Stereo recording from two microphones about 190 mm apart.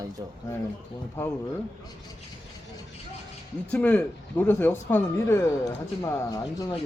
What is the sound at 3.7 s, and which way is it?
Speech, 5° left (ahead or behind).